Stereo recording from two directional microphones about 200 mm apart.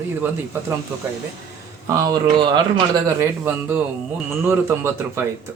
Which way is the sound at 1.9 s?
20° right (ahead or behind).